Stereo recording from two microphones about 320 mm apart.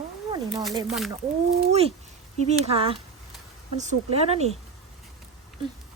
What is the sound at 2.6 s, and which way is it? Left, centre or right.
A woman's voice, centre.